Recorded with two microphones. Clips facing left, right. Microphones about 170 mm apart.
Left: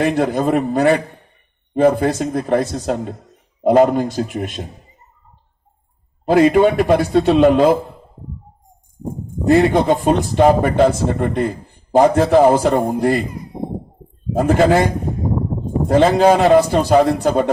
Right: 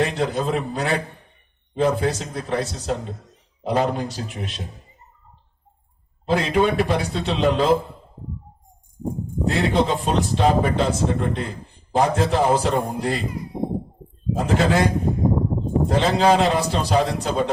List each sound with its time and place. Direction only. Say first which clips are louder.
0.0 s a man's voice: left 6 dB; 55° left (ahead or behind)
6.3 s speech: left 7 dB; 55° left (ahead or behind)
9.5 s speech: left 8 dB; 55° left (ahead or behind)
14.3 s a man's voice: left 6 dB; 55° left (ahead or behind)
15.9 s a man's voice: left 7 dB; 55° left (ahead or behind)